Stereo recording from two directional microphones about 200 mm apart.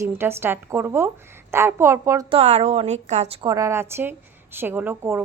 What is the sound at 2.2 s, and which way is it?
A woman's voice, 30° right (ahead or behind).